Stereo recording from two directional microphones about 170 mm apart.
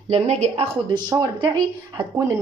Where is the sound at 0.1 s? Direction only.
40° right (ahead or behind).